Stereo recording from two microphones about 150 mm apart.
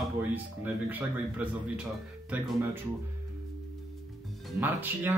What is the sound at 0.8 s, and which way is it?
Speech, 10° right (ahead or behind).